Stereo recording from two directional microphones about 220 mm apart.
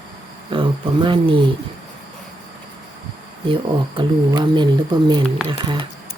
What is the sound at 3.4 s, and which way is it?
Speech, 25° right (ahead or behind).